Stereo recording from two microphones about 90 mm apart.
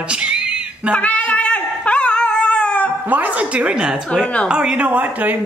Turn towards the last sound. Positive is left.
turn(degrees=-20)  # may be behind; listen again after turning